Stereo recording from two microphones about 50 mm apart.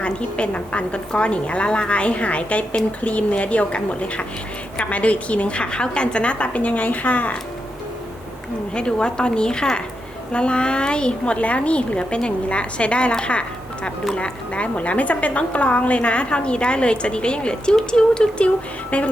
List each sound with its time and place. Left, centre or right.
0.0 s a woman's voice: left
8.7 s a woman's voice: centre